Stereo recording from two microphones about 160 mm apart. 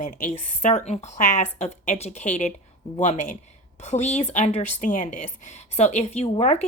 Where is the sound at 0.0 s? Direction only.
45° left (ahead or behind).